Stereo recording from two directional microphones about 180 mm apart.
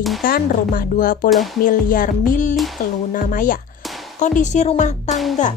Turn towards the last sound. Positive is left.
turn(degrees=0)  # may be behind; listen again after turning